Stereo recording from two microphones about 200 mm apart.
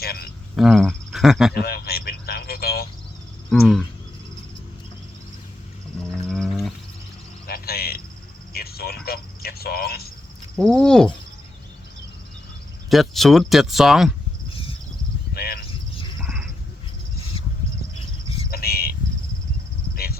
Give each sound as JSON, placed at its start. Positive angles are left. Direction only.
{"t": 0.0, "sound": "cricket", "side_deg": 50}
{"t": 0.5, "sound": "speech", "side_deg": 0}
{"t": 1.5, "sound": "a sound", "side_deg": 50}
{"t": 3.5, "sound": "speech", "side_deg": 0}
{"t": 6.2, "sound": "wild animals", "side_deg": 0}
{"t": 7.4, "sound": "cricket", "side_deg": 50}
{"t": 8.5, "sound": "a sound", "side_deg": 50}
{"t": 10.6, "sound": "speech", "side_deg": 5}
{"t": 12.9, "sound": "speech", "side_deg": 0}
{"t": 14.5, "sound": "cricket", "side_deg": 25}
{"t": 15.3, "sound": "cricket", "side_deg": 50}
{"t": 16.2, "sound": "a sound", "side_deg": 0}
{"t": 18.5, "sound": "a sound", "side_deg": 50}